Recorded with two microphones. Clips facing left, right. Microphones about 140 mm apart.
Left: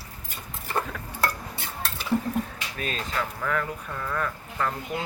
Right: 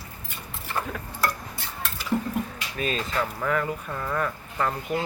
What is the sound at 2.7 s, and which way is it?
Speech, centre (ahead or behind).